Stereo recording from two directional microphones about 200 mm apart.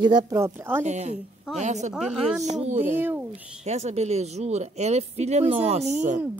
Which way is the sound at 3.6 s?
35° right (ahead or behind).